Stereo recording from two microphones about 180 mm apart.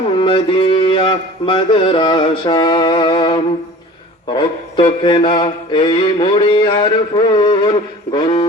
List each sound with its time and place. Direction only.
0.2 s mantra: 30° left (ahead or behind)